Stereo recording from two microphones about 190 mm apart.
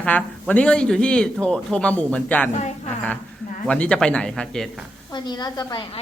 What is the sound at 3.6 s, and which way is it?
Speech, 5° left (ahead or behind).